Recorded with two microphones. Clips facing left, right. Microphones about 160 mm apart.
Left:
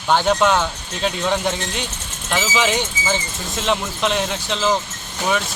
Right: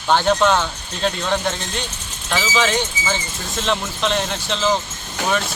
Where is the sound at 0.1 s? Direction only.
10° left (ahead or behind).